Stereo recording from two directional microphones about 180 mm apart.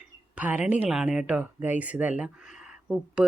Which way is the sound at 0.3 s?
10° right (ahead or behind).